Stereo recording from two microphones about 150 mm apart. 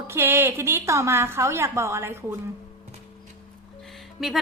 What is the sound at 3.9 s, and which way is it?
Music, centre (ahead or behind).